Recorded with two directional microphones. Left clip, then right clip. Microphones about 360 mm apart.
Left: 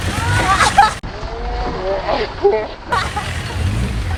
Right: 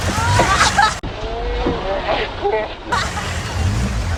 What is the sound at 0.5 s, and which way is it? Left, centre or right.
Music, centre.